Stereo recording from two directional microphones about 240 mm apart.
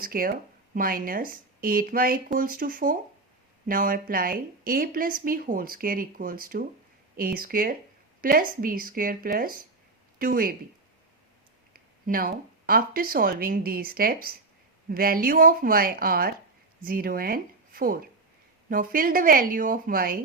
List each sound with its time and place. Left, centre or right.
0.0 s speech: right
11.7 s speech: right